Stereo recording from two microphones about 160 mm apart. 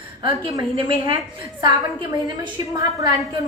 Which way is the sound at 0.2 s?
30° right (ahead or behind).